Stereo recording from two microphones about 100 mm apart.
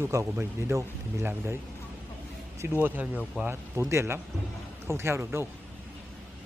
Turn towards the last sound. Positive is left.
turn(degrees=-25)  # may be behind; listen again after turning